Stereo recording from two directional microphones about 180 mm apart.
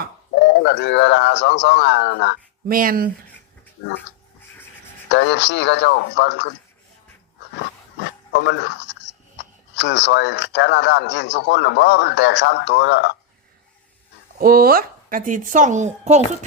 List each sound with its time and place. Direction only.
0.4 s speech: 75° left (ahead or behind)
2.6 s speech: 55° right (ahead or behind)
5.0 s speech: 80° left
8.3 s speech: 75° left (ahead or behind)
14.3 s speech: 55° right (ahead or behind); by 16.2 s 40° right (ahead or behind)